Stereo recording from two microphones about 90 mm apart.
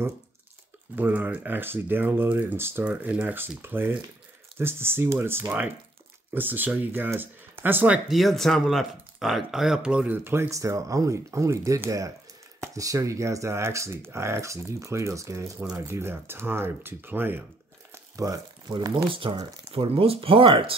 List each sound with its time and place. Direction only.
0.9 s speech: 20° right (ahead or behind)
8.1 s speech: centre (ahead or behind); by 17.5 s 20° right (ahead or behind)
17.9 s crumpling: 35° right (ahead or behind)
19.0 s speech: 80° right